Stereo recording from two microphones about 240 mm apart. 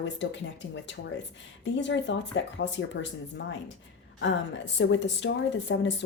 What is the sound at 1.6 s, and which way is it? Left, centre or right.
A woman's voice, left.